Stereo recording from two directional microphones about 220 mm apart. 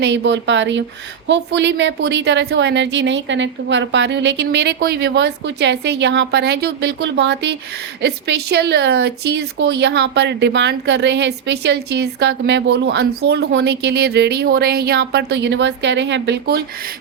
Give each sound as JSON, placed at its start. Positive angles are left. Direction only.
{"t": 0.0, "sound": "a woman's voice", "side_deg": -55}